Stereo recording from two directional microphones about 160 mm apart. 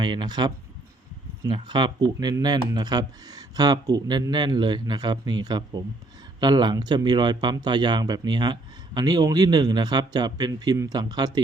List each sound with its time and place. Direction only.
0.0 s speech: 25° right (ahead or behind)